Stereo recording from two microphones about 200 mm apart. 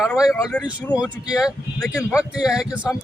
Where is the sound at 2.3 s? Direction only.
5° right (ahead or behind).